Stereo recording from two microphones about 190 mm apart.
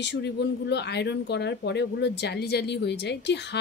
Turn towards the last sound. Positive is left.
turn(degrees=65)  # may be behind; listen again after turning